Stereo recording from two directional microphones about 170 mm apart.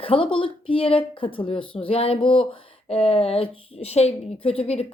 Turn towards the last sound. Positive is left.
turn(degrees=35)  # may be behind; listen again after turning